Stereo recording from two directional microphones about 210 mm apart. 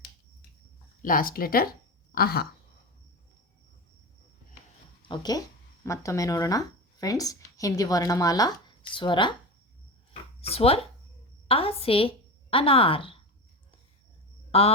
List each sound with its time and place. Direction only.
1.0 s speech: 40° left (ahead or behind)
5.0 s speech: 20° left (ahead or behind)
10.1 s a sound: 30° left (ahead or behind)
11.4 s a woman's voice: 25° left (ahead or behind)
14.5 s speech: 30° left (ahead or behind)